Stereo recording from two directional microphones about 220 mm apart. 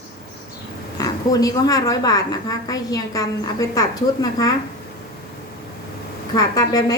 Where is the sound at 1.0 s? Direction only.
15° left (ahead or behind).